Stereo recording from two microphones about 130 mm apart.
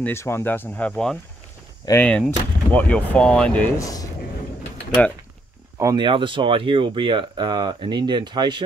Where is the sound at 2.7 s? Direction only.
10° left (ahead or behind).